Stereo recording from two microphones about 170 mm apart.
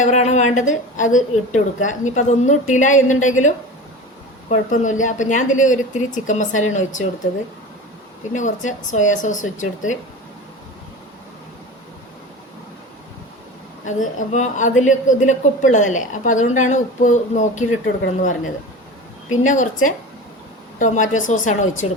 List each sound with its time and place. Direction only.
0.0 s a woman's voice: 45° left (ahead or behind)
8.3 s a woman's voice: 45° left (ahead or behind)
13.8 s a woman's voice: 45° left (ahead or behind)
19.5 s a woman's voice: 45° left (ahead or behind)